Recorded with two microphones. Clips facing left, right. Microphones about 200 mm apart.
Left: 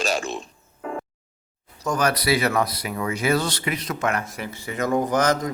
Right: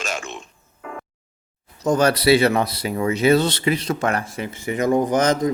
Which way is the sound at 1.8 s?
25° right (ahead or behind).